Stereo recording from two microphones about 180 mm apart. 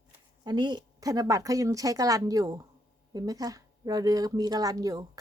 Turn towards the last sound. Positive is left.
turn(degrees=-20)  # may be behind; listen again after turning